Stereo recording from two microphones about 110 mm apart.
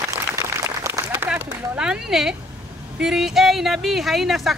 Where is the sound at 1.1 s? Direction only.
10° right (ahead or behind).